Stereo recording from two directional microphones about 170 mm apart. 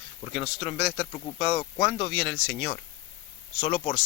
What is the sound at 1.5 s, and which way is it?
Speech, 20° left (ahead or behind).